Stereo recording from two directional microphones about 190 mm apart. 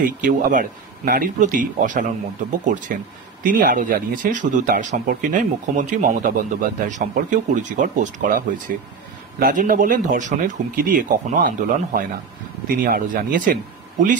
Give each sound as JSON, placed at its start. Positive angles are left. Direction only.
{"t": 0.0, "sound": "speech", "side_deg": -45}
{"t": 3.4, "sound": "speech", "side_deg": -45}